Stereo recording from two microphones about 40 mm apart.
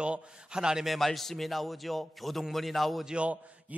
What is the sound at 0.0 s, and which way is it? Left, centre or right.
Speech, right.